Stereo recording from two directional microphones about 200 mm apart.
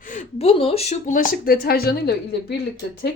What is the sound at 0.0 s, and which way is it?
A woman's voice, 40° left (ahead or behind).